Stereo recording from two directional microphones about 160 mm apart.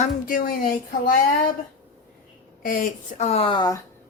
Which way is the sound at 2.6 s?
60° left (ahead or behind).